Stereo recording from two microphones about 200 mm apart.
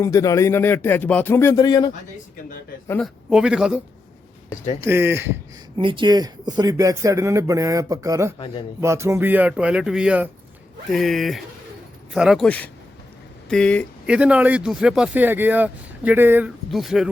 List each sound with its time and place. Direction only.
0.0 s speech: 15° left (ahead or behind)
3.0 s speech: 5° right (ahead or behind)
4.8 s speech: 10° right (ahead or behind)
5.7 s speech: 25° right (ahead or behind); by 13.8 s 5° left (ahead or behind)
14.1 s speech: 5° right (ahead or behind)